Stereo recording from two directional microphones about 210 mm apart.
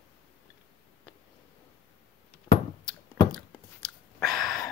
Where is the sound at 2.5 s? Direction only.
10° left (ahead or behind).